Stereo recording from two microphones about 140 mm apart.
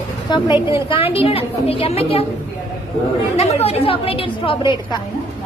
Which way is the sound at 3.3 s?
50° left (ahead or behind).